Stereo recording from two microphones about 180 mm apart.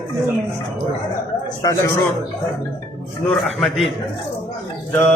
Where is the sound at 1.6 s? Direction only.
20° left (ahead or behind).